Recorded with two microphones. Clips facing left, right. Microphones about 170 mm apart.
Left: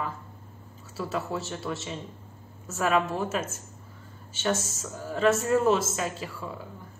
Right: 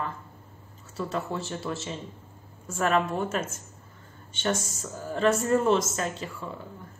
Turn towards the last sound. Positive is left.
turn(degrees=5)  # may be behind; listen again after turning